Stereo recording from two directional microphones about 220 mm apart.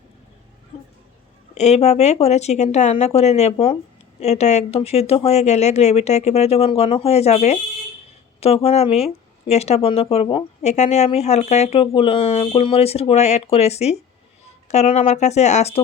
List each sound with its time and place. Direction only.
1.5 s speech: 30° left (ahead or behind)